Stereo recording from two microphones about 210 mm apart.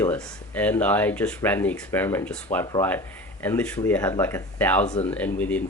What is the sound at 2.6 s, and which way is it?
Speech, 20° left (ahead or behind).